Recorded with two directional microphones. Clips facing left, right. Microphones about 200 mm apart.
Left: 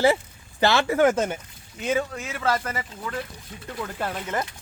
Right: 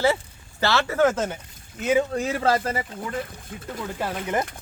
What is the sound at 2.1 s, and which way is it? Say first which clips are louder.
Speech: right 4 dB; 35° right (ahead or behind).